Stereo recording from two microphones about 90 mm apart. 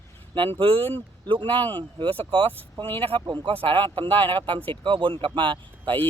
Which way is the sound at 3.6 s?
70° right (ahead or behind).